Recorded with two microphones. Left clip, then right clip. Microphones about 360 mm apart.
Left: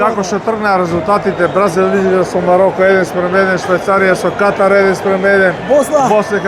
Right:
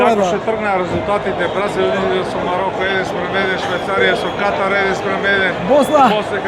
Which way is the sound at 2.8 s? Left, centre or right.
Left.